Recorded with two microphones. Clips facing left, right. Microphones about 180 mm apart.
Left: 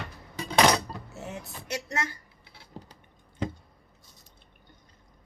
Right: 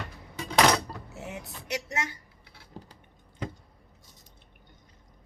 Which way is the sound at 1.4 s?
15° right (ahead or behind).